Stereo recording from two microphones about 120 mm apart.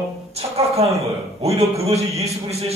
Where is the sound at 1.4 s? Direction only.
60° right (ahead or behind).